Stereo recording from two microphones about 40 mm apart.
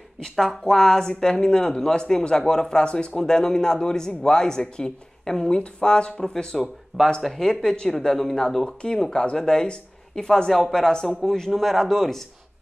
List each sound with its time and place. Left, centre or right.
0.2 s speech: centre
6.5 s speech: centre
7.2 s speech: centre
8.6 s speech: left